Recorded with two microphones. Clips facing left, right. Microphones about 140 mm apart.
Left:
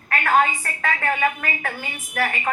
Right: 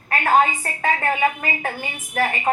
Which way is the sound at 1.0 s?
25° right (ahead or behind).